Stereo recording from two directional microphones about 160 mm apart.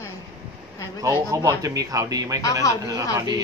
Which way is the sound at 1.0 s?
20° right (ahead or behind).